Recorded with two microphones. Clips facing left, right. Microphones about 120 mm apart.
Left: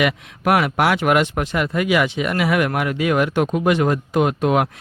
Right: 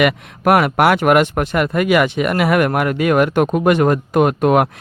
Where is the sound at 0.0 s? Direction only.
55° right (ahead or behind).